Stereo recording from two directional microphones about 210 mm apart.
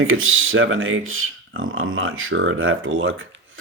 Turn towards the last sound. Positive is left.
turn(degrees=-70)  # may be behind; listen again after turning